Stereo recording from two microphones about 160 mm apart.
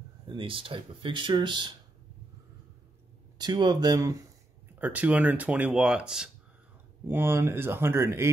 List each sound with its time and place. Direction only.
0.3 s speech: 35° right (ahead or behind)
3.3 s speech: 25° right (ahead or behind)
4.7 s speech: 10° right (ahead or behind)
7.1 s speech: 15° right (ahead or behind)